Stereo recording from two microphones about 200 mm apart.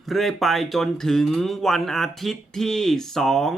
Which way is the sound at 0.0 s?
Centre (ahead or behind).